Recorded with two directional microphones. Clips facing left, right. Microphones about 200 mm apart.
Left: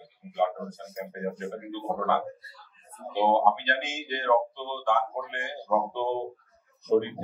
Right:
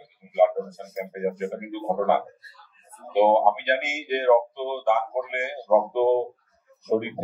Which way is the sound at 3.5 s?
25° left (ahead or behind).